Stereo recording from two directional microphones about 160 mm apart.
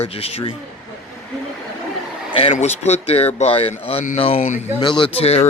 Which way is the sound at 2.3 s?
40° left (ahead or behind).